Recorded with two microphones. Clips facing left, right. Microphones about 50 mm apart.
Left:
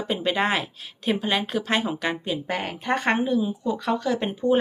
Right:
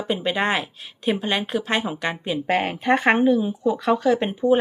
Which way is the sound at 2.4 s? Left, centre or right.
Right.